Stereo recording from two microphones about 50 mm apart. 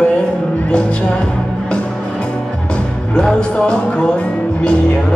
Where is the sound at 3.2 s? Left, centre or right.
Centre.